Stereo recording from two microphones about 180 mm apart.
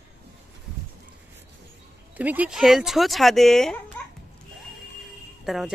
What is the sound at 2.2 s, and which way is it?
Speech, 10° right (ahead or behind).